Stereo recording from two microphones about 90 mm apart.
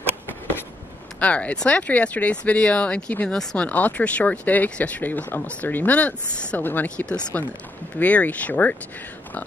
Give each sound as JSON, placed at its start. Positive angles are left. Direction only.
{"t": 1.2, "sound": "speech", "side_deg": 15}